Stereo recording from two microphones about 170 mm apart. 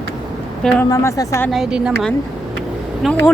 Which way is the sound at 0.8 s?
20° left (ahead or behind).